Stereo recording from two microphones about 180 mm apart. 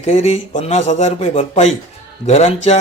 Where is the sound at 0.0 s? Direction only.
40° left (ahead or behind).